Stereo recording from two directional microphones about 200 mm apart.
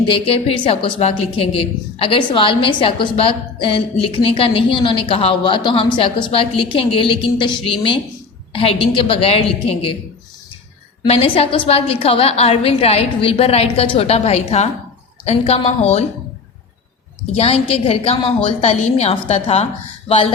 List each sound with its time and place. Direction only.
0.1 s a woman's voice: 30° left (ahead or behind)
11.0 s a woman's voice: 30° left (ahead or behind)
17.3 s a woman's voice: 30° left (ahead or behind)